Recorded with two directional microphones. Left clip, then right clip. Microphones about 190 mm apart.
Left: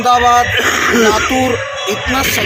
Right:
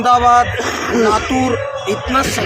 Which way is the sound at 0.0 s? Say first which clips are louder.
Left 1 dB; 5° right (ahead or behind).